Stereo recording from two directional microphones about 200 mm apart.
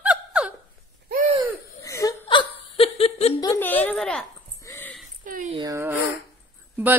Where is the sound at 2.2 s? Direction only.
30° left (ahead or behind).